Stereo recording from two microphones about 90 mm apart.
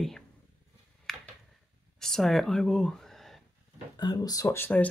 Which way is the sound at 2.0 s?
5° left (ahead or behind).